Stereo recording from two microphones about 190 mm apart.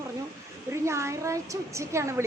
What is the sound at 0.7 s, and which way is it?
A woman's voice, 15° right (ahead or behind).